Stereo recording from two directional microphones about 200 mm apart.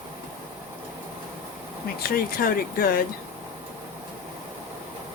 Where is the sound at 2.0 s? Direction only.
45° left (ahead or behind).